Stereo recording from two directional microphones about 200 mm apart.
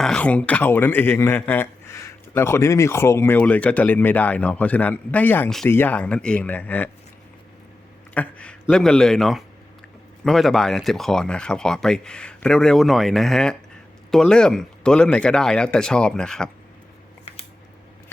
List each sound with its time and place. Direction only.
0.0 s speech: 5° left (ahead or behind)
8.1 s speech: 5° left (ahead or behind)